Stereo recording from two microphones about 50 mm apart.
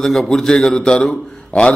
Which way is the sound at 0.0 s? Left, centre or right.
Centre.